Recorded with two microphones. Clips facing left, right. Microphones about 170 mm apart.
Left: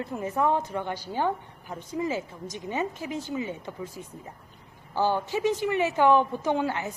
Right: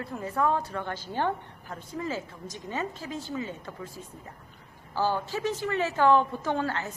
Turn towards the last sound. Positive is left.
turn(degrees=15)  # may be behind; listen again after turning